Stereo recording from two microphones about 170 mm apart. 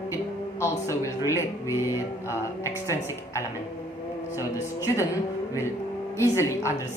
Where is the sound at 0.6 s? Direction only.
20° left (ahead or behind).